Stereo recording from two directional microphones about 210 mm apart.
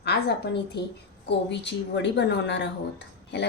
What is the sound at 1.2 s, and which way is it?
Speech, 55° left (ahead or behind).